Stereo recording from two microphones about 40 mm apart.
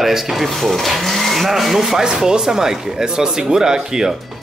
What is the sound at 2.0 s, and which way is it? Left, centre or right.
Speech, centre.